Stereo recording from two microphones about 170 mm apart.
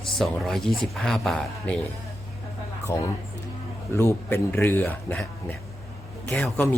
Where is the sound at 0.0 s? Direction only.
Centre (ahead or behind).